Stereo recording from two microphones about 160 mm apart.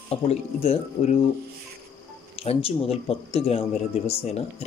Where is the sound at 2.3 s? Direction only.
40° left (ahead or behind).